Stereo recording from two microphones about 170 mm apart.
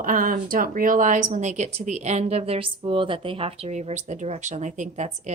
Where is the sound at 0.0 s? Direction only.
55° right (ahead or behind).